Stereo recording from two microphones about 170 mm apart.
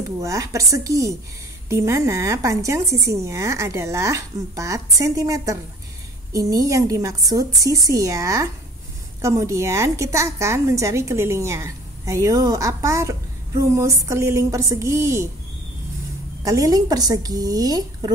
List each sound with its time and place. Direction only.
0.2 s a woman's voice: 20° right (ahead or behind)
16.4 s a woman's voice: 20° right (ahead or behind)